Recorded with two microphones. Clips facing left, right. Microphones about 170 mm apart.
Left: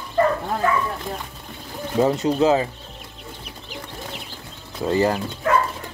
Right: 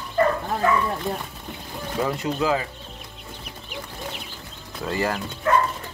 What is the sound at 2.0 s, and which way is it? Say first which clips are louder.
Speech: left 6 dB; 25° left (ahead or behind).